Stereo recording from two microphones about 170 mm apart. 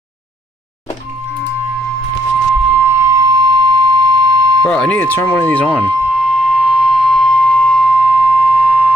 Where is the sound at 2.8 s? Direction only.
15° right (ahead or behind).